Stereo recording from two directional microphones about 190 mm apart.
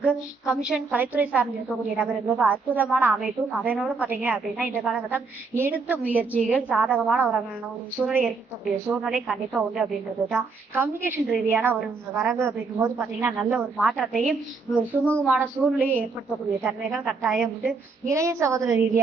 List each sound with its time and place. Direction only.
0.0 s a woman's voice: 5° right (ahead or behind)
18.1 s a woman's voice: 15° right (ahead or behind)